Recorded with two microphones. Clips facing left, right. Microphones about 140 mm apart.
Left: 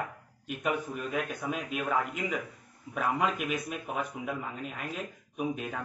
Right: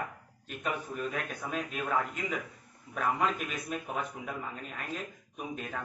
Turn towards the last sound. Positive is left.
turn(degrees=5)  # may be behind; listen again after turning